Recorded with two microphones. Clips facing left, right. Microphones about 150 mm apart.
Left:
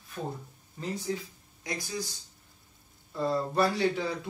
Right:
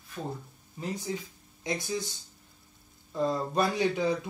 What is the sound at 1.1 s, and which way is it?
Speech, 15° right (ahead or behind).